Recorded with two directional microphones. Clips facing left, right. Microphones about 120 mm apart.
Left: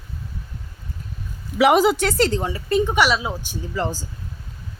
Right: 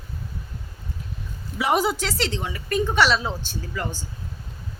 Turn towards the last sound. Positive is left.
turn(degrees=30)  # may be behind; listen again after turning